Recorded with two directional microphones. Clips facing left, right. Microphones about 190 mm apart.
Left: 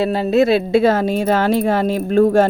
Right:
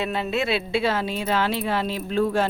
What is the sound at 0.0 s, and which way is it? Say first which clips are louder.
Speech: left 10 dB; 40° left (ahead or behind).